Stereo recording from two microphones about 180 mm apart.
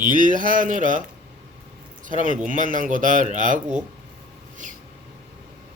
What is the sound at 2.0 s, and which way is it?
Speech, 45° right (ahead or behind).